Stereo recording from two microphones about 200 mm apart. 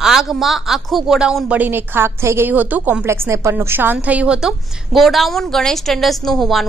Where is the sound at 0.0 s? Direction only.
Centre (ahead or behind).